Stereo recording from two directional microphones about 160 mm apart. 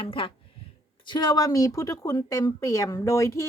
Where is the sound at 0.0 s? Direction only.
35° left (ahead or behind).